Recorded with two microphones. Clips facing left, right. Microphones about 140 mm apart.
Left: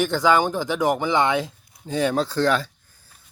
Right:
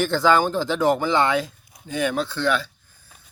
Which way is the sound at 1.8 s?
35° left (ahead or behind).